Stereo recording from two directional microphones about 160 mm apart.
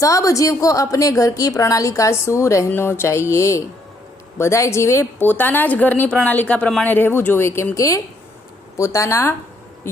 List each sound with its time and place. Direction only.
0.0 s a woman's voice: 20° left (ahead or behind)